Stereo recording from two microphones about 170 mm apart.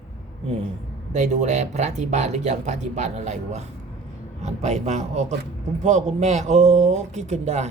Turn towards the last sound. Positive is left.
turn(degrees=-40)  # may be behind; listen again after turning